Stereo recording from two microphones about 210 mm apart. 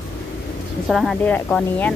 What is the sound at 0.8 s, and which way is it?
Speech, centre (ahead or behind).